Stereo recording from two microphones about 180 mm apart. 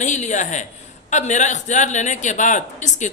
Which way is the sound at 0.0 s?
40° left (ahead or behind).